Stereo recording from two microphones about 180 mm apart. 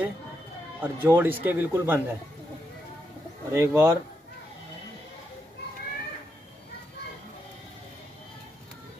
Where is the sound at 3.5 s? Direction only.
15° right (ahead or behind).